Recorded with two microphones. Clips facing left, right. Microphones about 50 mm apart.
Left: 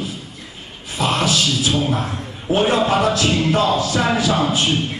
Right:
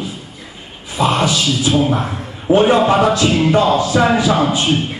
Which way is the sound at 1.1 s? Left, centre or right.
Centre.